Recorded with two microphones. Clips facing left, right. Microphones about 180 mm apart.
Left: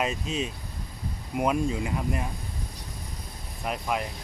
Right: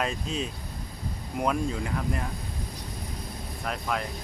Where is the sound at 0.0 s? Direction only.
5° left (ahead or behind).